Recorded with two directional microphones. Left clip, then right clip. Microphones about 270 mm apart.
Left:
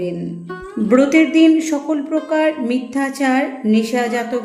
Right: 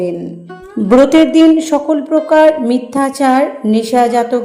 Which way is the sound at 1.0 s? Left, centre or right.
Centre.